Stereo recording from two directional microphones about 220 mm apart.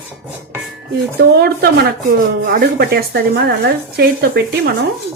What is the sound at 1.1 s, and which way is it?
Speech, 45° right (ahead or behind).